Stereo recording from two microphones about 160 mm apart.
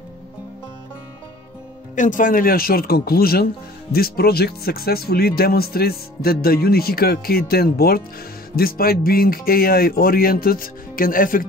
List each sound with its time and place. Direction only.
2.0 s speech: 55° left (ahead or behind)